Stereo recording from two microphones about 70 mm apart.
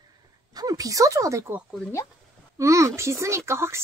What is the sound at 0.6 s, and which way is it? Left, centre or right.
Speech, right.